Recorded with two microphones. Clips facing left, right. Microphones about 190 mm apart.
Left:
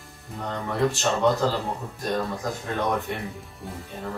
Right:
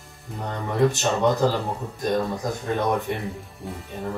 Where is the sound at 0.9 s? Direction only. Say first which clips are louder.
Right 1 dB; 15° right (ahead or behind).